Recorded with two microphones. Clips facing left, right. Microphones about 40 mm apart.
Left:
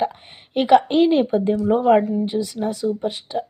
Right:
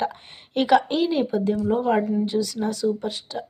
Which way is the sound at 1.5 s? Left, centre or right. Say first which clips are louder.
Left 7 dB; centre.